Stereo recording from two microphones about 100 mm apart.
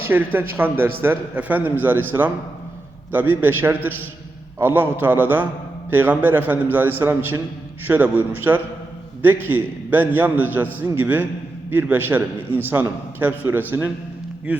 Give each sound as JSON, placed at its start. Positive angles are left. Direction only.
{"t": 0.0, "sound": "a man's voice", "side_deg": -20}
{"t": 3.1, "sound": "a man's voice", "side_deg": -20}